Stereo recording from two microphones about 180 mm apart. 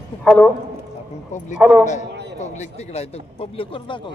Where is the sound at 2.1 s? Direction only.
70° right (ahead or behind).